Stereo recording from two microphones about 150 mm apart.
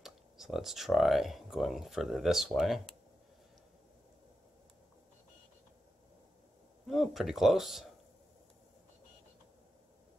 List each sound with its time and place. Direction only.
0.0 s speech: centre (ahead or behind)
6.9 s speech: centre (ahead or behind)